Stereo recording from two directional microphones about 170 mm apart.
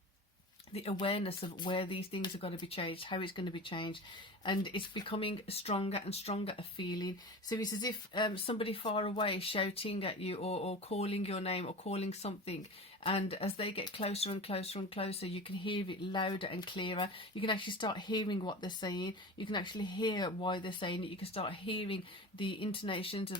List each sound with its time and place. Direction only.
0.7 s speech: 35° left (ahead or behind)